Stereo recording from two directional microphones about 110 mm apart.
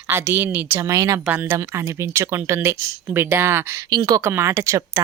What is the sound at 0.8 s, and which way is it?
Speech, 30° right (ahead or behind).